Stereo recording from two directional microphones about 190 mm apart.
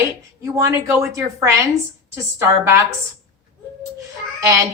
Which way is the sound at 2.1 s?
15° right (ahead or behind).